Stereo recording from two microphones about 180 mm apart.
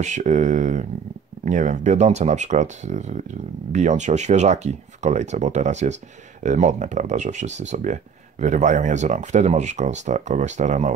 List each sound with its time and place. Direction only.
0.0 s speech: 40° right (ahead or behind)